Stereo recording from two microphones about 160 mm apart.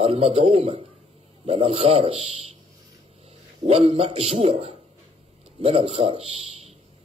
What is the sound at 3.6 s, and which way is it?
A man's voice, 40° right (ahead or behind).